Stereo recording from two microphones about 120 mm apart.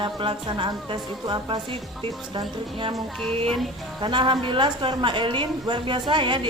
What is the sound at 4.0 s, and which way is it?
A woman's voice, 40° right (ahead or behind).